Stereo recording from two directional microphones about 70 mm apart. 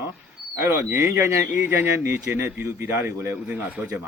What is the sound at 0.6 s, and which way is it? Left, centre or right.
A man's voice, right.